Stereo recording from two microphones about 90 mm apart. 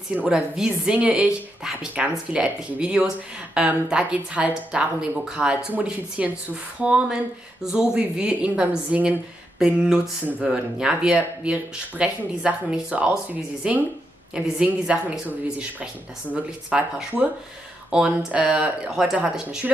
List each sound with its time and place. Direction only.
0.1 s speech: 10° right (ahead or behind)
17.9 s speech: 10° right (ahead or behind)